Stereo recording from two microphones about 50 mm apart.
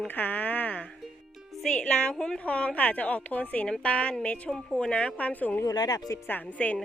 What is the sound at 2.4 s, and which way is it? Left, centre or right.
A woman's voice, left.